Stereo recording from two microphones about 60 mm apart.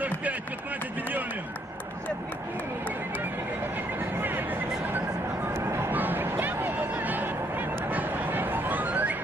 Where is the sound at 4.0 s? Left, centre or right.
Right.